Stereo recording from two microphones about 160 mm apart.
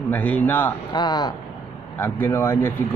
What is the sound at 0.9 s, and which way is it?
Speech, 25° left (ahead or behind).